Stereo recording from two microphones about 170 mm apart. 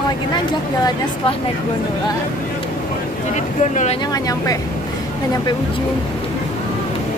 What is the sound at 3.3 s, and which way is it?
Speech, 45° left (ahead or behind).